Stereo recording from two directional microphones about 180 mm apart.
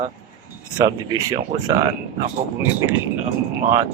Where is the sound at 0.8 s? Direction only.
20° right (ahead or behind).